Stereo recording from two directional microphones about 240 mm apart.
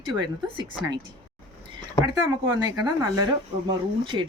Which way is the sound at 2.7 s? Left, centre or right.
Centre.